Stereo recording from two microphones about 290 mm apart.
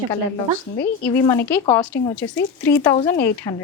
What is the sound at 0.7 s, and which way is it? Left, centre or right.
Speech, left.